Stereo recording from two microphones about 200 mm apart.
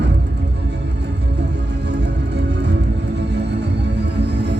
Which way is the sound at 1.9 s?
60° right (ahead or behind).